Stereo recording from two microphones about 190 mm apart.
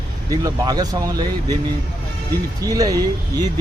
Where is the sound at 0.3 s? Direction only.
20° right (ahead or behind).